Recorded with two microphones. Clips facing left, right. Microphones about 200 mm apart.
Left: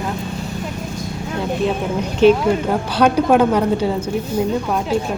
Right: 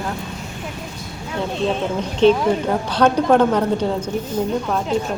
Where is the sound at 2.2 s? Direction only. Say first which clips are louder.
Left 2 dB; 10° left (ahead or behind).